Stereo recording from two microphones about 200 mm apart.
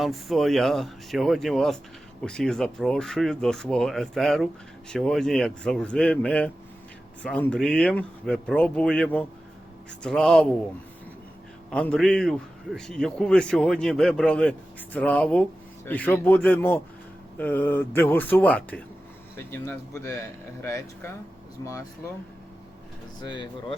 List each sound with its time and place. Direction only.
0.0 s a man's voice: centre (ahead or behind)
11.7 s a man's voice: 5° left (ahead or behind)
23.3 s speech: 25° left (ahead or behind)